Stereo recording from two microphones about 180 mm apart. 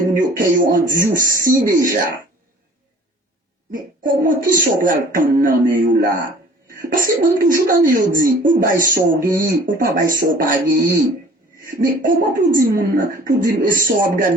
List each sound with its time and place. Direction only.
0.0 s speech: 50° right (ahead or behind)
3.7 s speech: 50° right (ahead or behind)